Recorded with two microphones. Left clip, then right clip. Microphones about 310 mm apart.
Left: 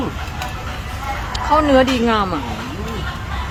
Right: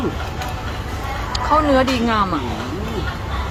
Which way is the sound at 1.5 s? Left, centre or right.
Centre.